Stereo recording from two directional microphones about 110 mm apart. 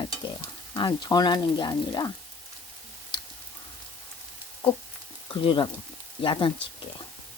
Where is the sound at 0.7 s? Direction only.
45° left (ahead or behind).